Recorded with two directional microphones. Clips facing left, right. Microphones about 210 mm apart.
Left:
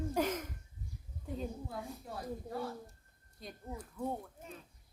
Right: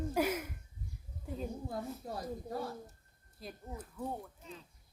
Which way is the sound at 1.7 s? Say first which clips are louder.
Right 3 dB; 40° right (ahead or behind).